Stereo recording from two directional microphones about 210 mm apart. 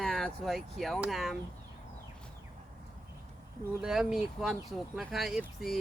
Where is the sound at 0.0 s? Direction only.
Centre (ahead or behind).